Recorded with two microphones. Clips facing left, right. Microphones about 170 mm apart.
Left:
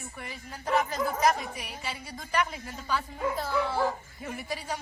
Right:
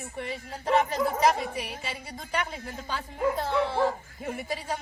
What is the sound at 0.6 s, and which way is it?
A woman's voice, 30° right (ahead or behind).